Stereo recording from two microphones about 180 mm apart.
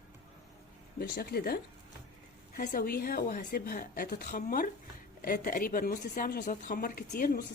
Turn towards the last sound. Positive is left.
turn(degrees=60)  # may be behind; listen again after turning